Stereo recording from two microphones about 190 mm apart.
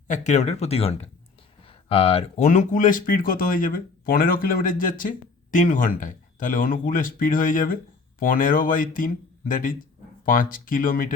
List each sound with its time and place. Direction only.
0.1 s speech: 40° left (ahead or behind)